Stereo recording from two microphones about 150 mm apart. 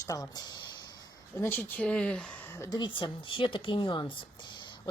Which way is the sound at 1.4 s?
15° left (ahead or behind).